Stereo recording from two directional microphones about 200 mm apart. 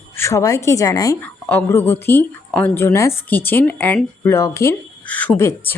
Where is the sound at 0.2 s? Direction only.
15° left (ahead or behind).